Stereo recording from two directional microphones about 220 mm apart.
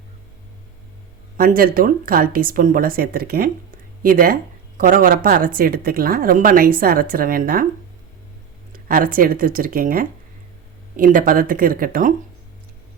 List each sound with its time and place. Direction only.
1.4 s speech: 40° right (ahead or behind)
8.7 s speech: 40° right (ahead or behind)